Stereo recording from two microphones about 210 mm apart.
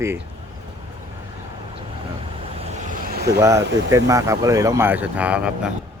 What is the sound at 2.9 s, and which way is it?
Vehicle, 45° right (ahead or behind).